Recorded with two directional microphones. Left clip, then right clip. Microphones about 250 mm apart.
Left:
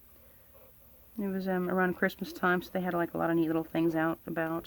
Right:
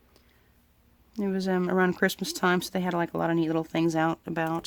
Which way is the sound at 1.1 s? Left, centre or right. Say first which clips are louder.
Right 5 dB; right.